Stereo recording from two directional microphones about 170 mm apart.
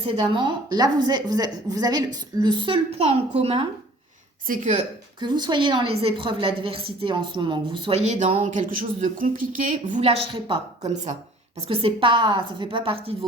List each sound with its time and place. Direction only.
0.0 s a woman's voice: 25° right (ahead or behind)
4.4 s a woman's voice: 50° right (ahead or behind)
5.2 s a woman's voice: 25° right (ahead or behind); by 9.7 s 55° right (ahead or behind)
9.9 s a woman's voice: 35° right (ahead or behind)
11.7 s a woman's voice: 30° right (ahead or behind)